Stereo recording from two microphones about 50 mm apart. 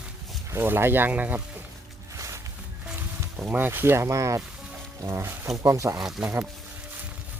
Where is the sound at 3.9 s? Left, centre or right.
Right.